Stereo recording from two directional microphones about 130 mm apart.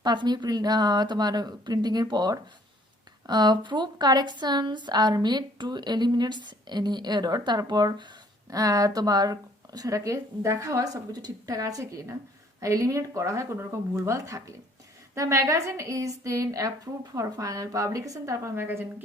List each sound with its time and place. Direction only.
0.0 s a woman's voice: 35° right (ahead or behind); by 19.0 s 20° right (ahead or behind)